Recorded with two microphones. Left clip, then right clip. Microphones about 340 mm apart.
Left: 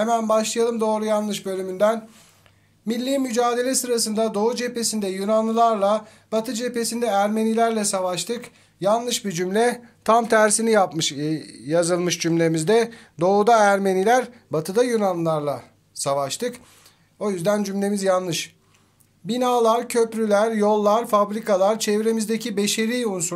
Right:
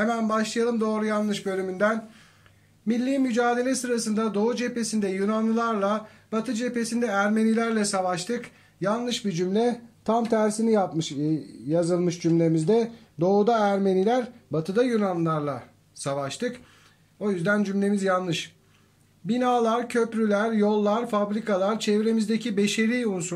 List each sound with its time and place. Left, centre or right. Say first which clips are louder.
0.0 s a man's voice: left 5 dB; centre
10.1 s speech: left 7 dB; left
10.7 s a man's voice: left 5 dB; left